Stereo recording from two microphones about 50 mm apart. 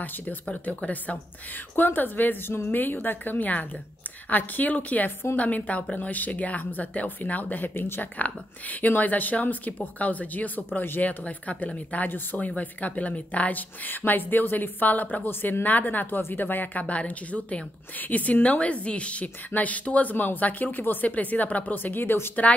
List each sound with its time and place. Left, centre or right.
0.0 s a woman's voice: left
1.8 s a woman's voice: left
8.2 s a woman's voice: left
11.1 s a woman's voice: left
16.2 s a woman's voice: left